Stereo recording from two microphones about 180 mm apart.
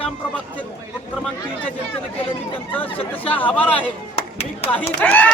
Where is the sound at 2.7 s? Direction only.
10° left (ahead or behind).